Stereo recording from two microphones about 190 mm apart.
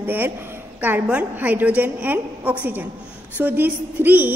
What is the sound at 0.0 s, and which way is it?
A woman's voice, 10° right (ahead or behind).